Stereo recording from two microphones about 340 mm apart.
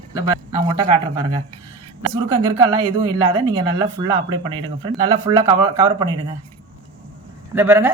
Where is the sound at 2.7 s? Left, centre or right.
Centre.